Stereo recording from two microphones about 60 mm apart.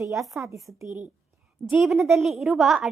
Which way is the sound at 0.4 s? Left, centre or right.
Right.